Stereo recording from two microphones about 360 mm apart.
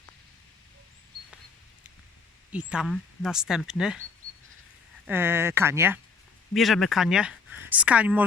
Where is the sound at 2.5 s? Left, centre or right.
Centre.